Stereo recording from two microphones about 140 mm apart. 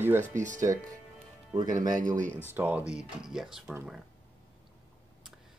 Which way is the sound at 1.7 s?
70° right (ahead or behind).